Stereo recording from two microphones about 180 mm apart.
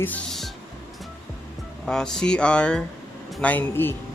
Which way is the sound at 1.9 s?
5° left (ahead or behind).